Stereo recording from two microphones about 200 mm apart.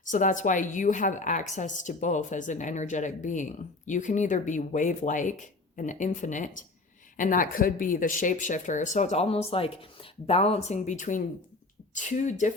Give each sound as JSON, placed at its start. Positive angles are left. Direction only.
{"t": 0.0, "sound": "a woman's voice", "side_deg": 40}